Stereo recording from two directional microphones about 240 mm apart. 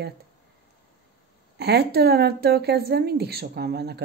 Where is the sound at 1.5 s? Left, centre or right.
Right.